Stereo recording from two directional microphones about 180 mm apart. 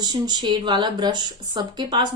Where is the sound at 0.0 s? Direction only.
25° right (ahead or behind).